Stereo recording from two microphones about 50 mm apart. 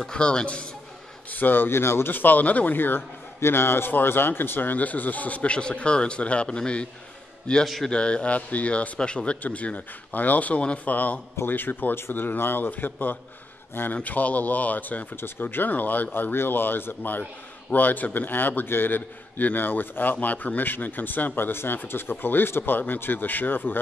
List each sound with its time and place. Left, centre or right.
0.0 s speech: centre
1.3 s a man's voice: left
2.1 s a man's voice: left
3.3 s a man's voice: left
7.6 s a man's voice: centre
7.9 s speech: left
11.4 s a man's voice: left